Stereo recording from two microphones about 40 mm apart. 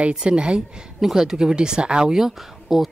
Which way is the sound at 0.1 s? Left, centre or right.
Right.